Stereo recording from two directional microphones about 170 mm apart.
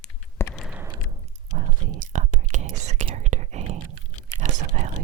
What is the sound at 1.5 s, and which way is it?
Whispering, 45° right (ahead or behind).